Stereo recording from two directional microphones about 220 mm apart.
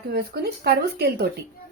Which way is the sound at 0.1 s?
45° right (ahead or behind).